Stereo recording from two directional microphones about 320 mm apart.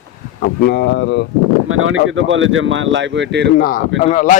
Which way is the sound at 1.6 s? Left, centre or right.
Right.